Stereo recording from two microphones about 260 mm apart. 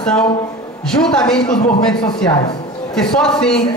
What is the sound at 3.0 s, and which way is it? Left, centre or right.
Speech, centre.